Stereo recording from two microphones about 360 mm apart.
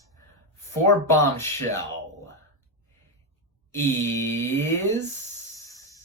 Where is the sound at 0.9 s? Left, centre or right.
Centre.